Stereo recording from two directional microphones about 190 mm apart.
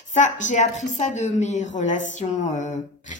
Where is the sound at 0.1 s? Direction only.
40° left (ahead or behind).